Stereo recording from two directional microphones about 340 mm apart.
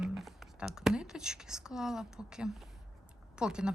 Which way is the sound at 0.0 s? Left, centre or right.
Centre.